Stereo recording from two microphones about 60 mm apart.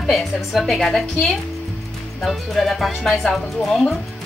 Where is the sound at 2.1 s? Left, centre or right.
Centre.